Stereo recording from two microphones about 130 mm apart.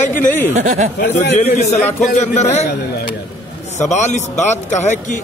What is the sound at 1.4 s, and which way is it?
A man's voice, 60° left (ahead or behind).